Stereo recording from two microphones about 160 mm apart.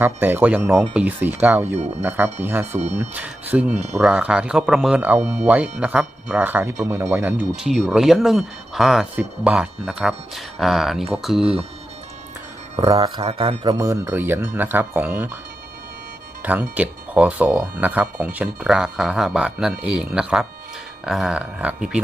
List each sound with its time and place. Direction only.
0.0 s speech: 15° right (ahead or behind)
12.8 s speech: 25° right (ahead or behind)
13.2 s speech: 35° right (ahead or behind)
13.7 s speech: 20° right (ahead or behind)
16.4 s speech: 10° right (ahead or behind)